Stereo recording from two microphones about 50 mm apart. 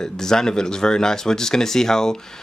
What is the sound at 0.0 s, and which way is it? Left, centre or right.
Speech, centre.